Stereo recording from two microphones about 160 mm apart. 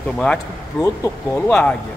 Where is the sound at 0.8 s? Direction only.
20° left (ahead or behind).